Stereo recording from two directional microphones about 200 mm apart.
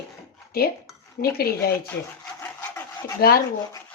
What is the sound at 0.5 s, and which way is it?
Speech, 50° left (ahead or behind).